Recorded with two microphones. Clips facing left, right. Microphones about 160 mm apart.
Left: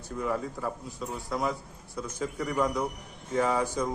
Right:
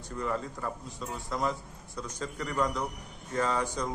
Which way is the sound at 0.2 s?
5° left (ahead or behind).